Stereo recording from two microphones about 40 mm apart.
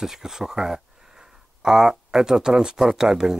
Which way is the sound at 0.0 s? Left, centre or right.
Centre.